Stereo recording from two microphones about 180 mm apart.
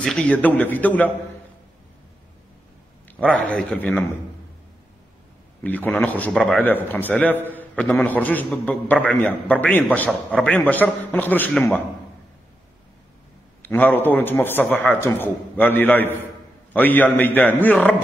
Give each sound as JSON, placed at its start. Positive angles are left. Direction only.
{"t": 0.0, "sound": "a man's voice", "side_deg": 5}
{"t": 3.2, "sound": "a man's voice", "side_deg": 5}
{"t": 5.6, "sound": "a man's voice", "side_deg": 10}
{"t": 13.6, "sound": "a man's voice", "side_deg": 10}